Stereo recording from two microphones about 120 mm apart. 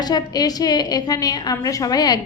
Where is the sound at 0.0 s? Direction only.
35° left (ahead or behind).